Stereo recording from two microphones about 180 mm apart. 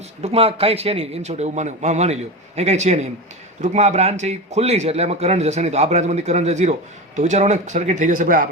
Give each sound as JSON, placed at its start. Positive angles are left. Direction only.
{"t": 0.2, "sound": "speech", "side_deg": -35}